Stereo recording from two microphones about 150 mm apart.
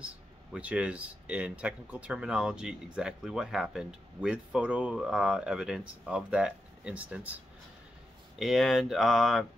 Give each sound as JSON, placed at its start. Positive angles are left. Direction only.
{"t": 0.0, "sound": "speech", "side_deg": -10}
{"t": 8.4, "sound": "speech", "side_deg": 0}